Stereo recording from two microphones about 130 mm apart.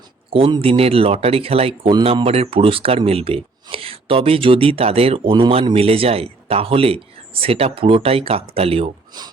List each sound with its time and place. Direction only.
0.3 s speech: 45° right (ahead or behind)